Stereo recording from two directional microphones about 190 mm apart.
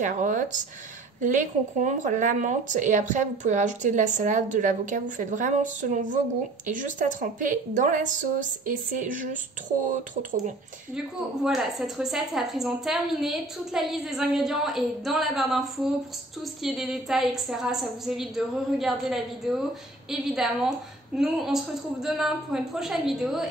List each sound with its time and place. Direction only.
0.0 s speech: 40° right (ahead or behind)
11.4 s a woman's voice: centre (ahead or behind)